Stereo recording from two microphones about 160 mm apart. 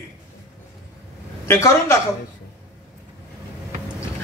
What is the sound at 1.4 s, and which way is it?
Speech, 15° left (ahead or behind).